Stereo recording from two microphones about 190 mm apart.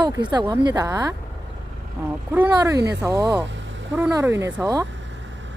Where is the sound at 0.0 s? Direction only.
20° right (ahead or behind).